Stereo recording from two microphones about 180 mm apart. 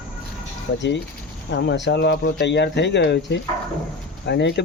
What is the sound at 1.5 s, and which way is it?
Speech, 75° left (ahead or behind).